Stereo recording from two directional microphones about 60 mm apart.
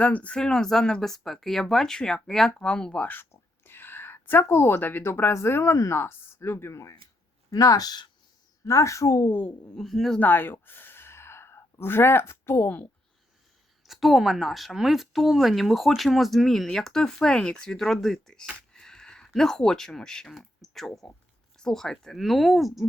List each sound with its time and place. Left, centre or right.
0.0 s speech: left
0.3 s speech: centre
2.5 s speech: centre
3.1 s speech: left
7.5 s speech: left
8.6 s speech: left
9.2 s speech: left
9.7 s speech: centre
10.2 s a sound: left
13.8 s speech: centre
18.7 s a sound: centre
19.3 s speech: centre